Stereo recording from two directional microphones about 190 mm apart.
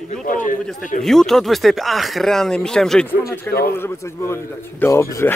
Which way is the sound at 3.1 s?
50° left (ahead or behind).